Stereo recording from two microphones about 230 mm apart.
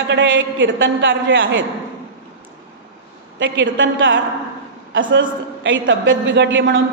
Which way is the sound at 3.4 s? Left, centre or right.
Right.